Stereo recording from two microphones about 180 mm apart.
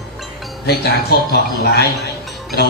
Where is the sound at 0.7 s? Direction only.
60° left (ahead or behind).